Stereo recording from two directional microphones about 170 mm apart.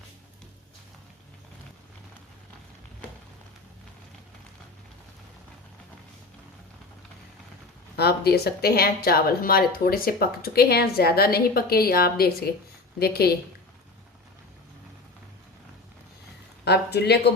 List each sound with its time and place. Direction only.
7.9 s a woman's voice: 70° left (ahead or behind)
16.6 s speech: 80° left